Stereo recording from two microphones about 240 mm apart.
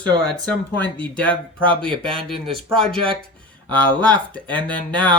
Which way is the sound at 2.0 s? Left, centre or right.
Right.